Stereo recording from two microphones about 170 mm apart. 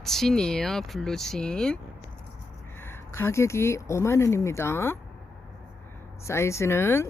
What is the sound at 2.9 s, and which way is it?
Speech, 15° left (ahead or behind).